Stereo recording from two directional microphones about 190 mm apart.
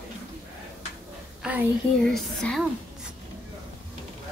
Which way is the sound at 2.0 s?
Centre (ahead or behind).